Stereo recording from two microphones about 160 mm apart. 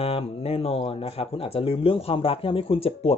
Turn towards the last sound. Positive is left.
turn(degrees=35)  # may be behind; listen again after turning